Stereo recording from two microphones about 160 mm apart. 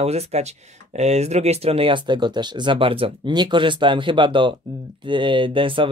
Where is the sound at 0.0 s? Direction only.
40° right (ahead or behind).